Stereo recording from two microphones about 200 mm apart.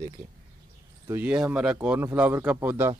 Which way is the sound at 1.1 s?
5° right (ahead or behind).